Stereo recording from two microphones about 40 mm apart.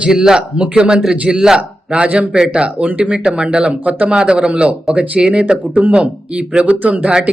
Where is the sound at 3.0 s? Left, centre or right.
Right.